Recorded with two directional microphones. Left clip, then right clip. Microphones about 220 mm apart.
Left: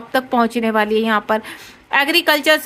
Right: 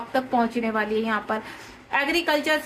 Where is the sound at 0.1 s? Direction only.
45° left (ahead or behind).